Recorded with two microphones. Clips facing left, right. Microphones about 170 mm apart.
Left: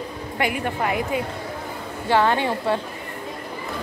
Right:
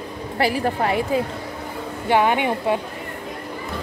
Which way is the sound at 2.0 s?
15° right (ahead or behind).